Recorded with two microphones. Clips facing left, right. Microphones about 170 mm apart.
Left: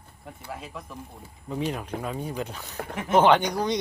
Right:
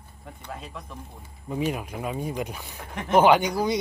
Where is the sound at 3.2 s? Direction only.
10° right (ahead or behind).